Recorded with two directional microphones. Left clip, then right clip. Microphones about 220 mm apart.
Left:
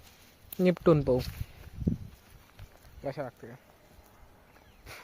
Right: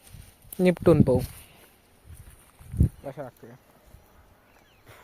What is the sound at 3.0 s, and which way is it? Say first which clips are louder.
Speech: left 1 dB; 15° left (ahead or behind).